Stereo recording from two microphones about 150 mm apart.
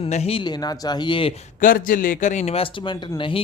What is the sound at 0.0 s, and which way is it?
Speech, 45° left (ahead or behind).